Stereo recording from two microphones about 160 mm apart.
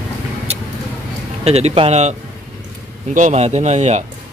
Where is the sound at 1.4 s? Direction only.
40° right (ahead or behind).